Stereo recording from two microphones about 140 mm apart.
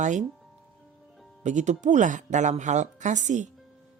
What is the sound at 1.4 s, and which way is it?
Speech, 60° right (ahead or behind).